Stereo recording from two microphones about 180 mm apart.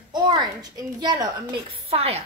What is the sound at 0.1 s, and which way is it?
A child's voice, 25° right (ahead or behind).